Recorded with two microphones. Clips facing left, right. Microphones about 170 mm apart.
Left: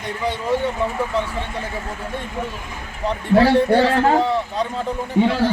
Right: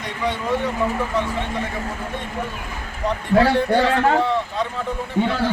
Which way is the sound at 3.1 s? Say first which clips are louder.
Left 2 dB; 30° left (ahead or behind).